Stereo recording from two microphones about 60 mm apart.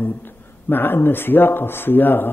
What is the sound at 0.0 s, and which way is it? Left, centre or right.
A man's voice, left.